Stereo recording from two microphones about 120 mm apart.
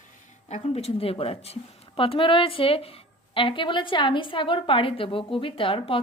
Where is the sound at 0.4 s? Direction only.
65° left (ahead or behind).